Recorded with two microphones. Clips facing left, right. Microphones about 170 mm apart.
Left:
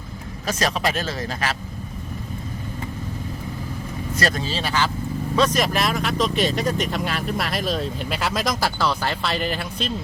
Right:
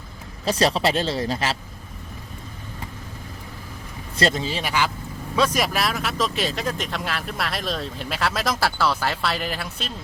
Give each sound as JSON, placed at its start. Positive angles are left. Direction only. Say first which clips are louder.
{"t": 0.4, "sound": "speech", "louder": "right 3 dB", "side_deg": -30}
{"t": 4.2, "sound": "speech", "louder": "right 2 dB", "side_deg": -20}